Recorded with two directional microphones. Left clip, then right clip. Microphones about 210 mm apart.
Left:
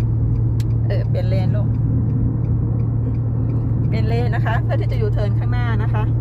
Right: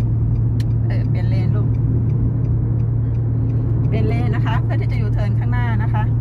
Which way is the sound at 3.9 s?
45° left (ahead or behind).